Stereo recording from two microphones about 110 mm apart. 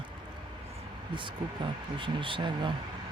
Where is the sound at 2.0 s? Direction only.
50° right (ahead or behind).